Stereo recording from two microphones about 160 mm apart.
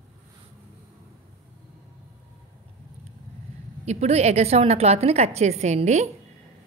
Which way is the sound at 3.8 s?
45° right (ahead or behind).